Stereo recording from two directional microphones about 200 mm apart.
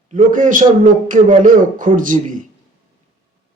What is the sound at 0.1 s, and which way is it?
Speech, 40° right (ahead or behind).